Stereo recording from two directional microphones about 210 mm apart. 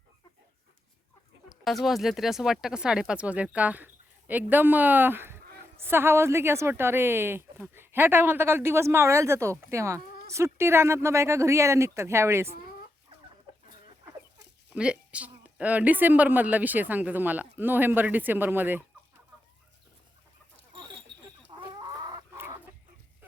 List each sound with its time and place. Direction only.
1.5 s a woman's voice: centre (ahead or behind)
14.7 s a woman's voice: 5° right (ahead or behind)
21.1 s a sound: 55° right (ahead or behind)
21.5 s chicken: 20° right (ahead or behind)